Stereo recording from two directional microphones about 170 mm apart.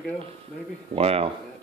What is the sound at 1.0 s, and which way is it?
Speech, 35° right (ahead or behind).